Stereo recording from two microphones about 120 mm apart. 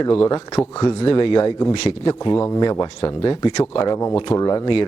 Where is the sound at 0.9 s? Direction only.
45° left (ahead or behind).